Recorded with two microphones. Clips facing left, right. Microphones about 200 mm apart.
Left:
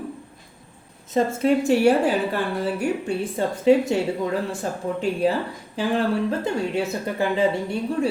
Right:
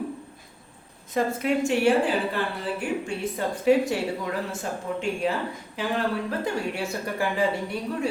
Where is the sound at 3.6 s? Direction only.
25° left (ahead or behind).